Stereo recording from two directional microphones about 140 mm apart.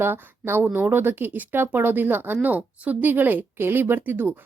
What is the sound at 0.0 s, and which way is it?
A woman's voice, 15° right (ahead or behind).